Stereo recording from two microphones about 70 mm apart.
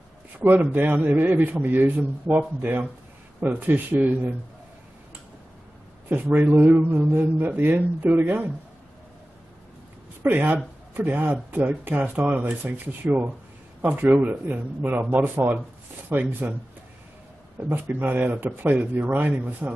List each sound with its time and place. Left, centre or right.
0.4 s a man's voice: right
6.0 s a man's voice: right
10.2 s a man's voice: right
17.6 s a man's voice: right